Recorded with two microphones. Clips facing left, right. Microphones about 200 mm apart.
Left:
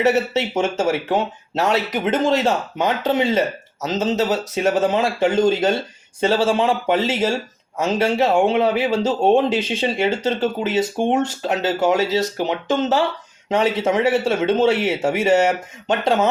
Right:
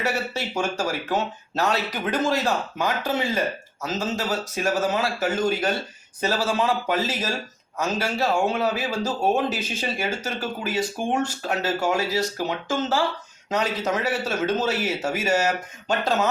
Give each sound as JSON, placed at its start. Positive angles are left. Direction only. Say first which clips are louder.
{"t": 0.0, "sound": "a man's voice", "louder": "left 9 dB", "side_deg": 25}